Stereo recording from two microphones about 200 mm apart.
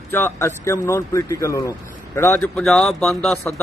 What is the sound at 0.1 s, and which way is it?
Speech, 10° left (ahead or behind).